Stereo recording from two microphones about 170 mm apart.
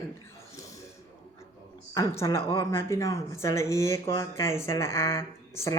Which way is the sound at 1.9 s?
20° left (ahead or behind).